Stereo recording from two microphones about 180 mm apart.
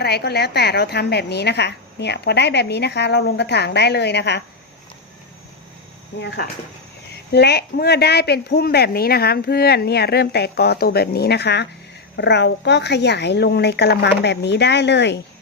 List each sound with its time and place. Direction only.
0.0 s a woman's voice: 65° left (ahead or behind)
7.1 s a woman's voice: 65° left (ahead or behind)